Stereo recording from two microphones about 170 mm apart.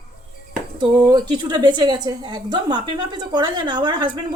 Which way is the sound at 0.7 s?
25° right (ahead or behind).